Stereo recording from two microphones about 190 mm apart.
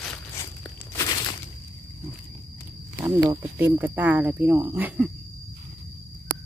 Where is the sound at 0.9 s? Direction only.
20° left (ahead or behind).